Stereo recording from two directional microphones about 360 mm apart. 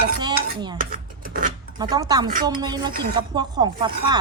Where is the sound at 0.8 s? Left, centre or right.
Right.